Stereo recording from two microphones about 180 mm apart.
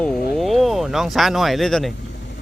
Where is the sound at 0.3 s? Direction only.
Centre (ahead or behind).